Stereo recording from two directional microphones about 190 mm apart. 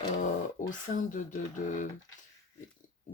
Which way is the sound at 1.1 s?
40° left (ahead or behind).